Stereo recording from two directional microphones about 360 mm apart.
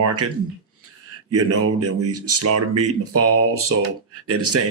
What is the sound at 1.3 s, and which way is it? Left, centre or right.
Speech, right.